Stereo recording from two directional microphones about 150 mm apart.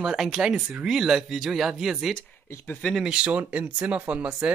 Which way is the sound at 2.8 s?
5° right (ahead or behind).